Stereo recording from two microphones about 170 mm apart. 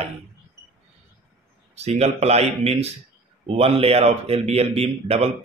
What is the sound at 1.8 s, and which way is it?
Speech, 40° right (ahead or behind).